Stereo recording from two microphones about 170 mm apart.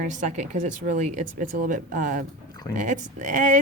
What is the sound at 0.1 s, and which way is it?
Speech, 45° right (ahead or behind).